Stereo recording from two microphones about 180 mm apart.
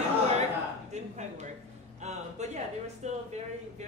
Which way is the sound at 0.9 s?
40° right (ahead or behind).